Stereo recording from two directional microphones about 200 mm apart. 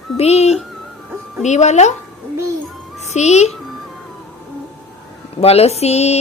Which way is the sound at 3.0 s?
35° left (ahead or behind).